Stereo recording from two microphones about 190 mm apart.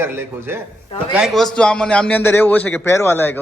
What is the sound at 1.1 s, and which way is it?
A man's voice, centre (ahead or behind).